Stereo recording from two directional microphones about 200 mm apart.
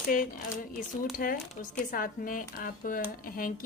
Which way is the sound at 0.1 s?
40° left (ahead or behind).